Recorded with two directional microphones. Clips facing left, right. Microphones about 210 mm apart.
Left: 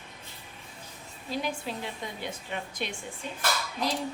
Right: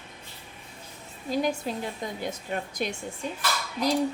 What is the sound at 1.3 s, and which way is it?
A woman's voice, 40° right (ahead or behind).